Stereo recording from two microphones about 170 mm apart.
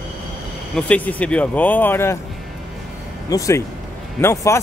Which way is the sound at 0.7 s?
10° left (ahead or behind).